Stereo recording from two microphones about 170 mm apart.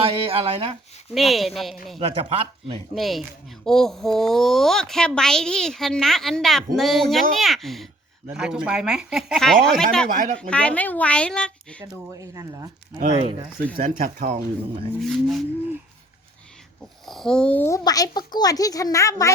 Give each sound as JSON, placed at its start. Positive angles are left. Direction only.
{"t": 0.0, "sound": "speech", "side_deg": -35}
{"t": 1.1, "sound": "speech", "side_deg": 0}
{"t": 2.0, "sound": "speech", "side_deg": -35}
{"t": 2.9, "sound": "speech", "side_deg": 0}
{"t": 10.1, "sound": "speech", "side_deg": -50}
{"t": 10.5, "sound": "a woman's voice", "side_deg": 5}
{"t": 12.1, "sound": "speech", "side_deg": -20}
{"t": 13.7, "sound": "speech", "side_deg": -55}
{"t": 15.0, "sound": "speech", "side_deg": 0}
{"t": 17.1, "sound": "a child's voice", "side_deg": 0}